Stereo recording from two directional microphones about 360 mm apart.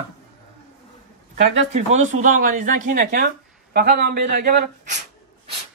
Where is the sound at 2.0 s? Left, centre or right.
Centre.